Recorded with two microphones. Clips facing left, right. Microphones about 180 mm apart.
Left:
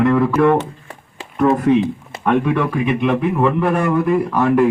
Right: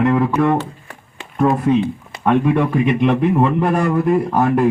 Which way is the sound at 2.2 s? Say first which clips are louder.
Right 1 dB; 45° right (ahead or behind).